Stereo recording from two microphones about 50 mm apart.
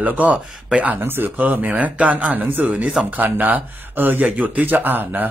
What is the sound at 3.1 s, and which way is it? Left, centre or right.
Speech, right.